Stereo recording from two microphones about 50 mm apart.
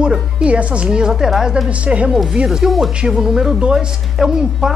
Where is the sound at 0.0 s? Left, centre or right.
Centre.